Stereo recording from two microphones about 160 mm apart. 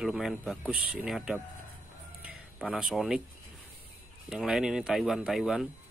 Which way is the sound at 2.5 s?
Centre (ahead or behind).